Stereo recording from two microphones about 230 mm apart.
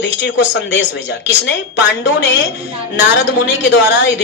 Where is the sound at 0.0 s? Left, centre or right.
Left.